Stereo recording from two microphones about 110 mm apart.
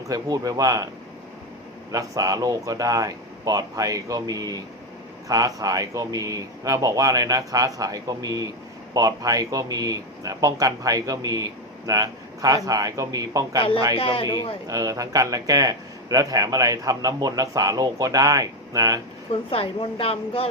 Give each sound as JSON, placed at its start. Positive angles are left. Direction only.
{"t": 0.1, "sound": "a man's voice", "side_deg": -35}
{"t": 1.9, "sound": "a man's voice", "side_deg": -30}
{"t": 14.0, "sound": "a man's voice", "side_deg": 50}
{"t": 14.7, "sound": "a man's voice", "side_deg": -30}
{"t": 19.5, "sound": "speech", "side_deg": 55}